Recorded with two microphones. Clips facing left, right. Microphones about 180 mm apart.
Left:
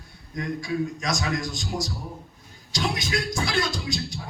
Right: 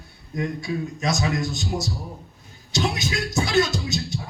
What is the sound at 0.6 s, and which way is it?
Music, 25° right (ahead or behind).